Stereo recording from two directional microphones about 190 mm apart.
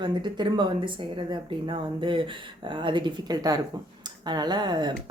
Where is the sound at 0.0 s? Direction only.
25° right (ahead or behind).